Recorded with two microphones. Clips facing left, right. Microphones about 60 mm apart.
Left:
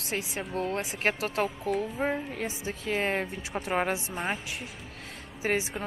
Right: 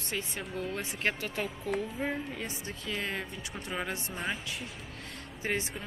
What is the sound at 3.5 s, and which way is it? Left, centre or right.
Speech, left.